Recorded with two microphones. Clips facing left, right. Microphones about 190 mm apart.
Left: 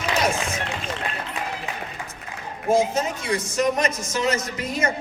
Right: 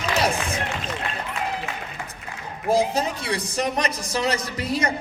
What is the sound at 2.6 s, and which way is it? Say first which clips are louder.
A woman's voice: left 1 dB; 35° right (ahead or behind).